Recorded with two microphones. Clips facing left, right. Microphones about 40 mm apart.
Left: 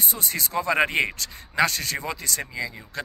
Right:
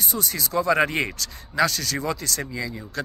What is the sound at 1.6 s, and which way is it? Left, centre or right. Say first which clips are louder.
Speech: right 1 dB; left.